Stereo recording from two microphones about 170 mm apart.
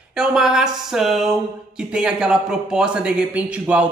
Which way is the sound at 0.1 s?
5° right (ahead or behind).